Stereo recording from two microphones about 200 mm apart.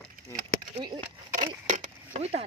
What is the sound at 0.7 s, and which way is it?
Speech, 20° right (ahead or behind).